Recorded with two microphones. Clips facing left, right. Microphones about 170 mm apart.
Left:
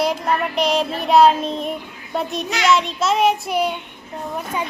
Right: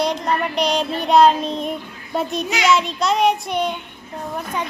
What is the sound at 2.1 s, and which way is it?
Child singing, centre (ahead or behind).